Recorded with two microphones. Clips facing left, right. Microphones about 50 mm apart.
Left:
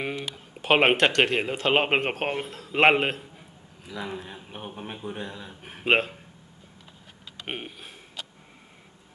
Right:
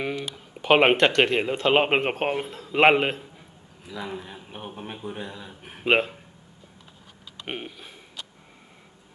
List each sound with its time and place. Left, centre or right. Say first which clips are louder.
0.6 s a man's voice: right 2 dB; centre
7.4 s speech: right 1 dB; centre